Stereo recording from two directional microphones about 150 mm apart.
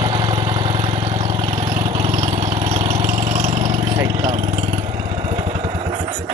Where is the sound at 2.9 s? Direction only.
55° right (ahead or behind).